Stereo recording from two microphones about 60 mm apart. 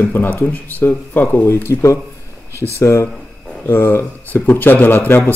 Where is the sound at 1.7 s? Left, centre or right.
Left.